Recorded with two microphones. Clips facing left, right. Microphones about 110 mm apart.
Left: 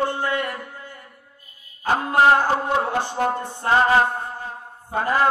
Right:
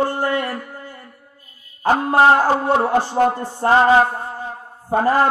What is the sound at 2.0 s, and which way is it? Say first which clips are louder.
Speech: right 2 dB; 35° right (ahead or behind).